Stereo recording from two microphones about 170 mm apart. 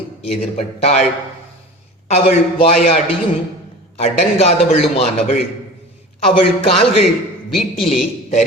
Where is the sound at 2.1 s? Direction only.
35° left (ahead or behind).